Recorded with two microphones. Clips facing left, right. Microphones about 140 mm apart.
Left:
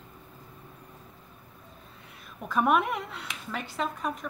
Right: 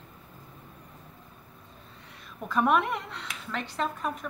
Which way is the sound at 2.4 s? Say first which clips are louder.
Even; centre (ahead or behind).